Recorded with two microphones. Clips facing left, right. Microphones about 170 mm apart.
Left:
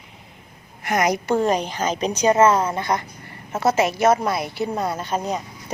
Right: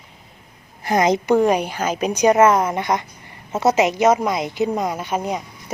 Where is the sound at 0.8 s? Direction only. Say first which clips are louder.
Right 3 dB; 25° right (ahead or behind).